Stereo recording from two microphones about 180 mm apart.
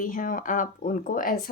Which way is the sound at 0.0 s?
50° left (ahead or behind).